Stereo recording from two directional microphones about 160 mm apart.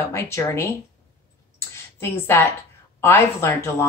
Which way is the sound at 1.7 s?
15° left (ahead or behind).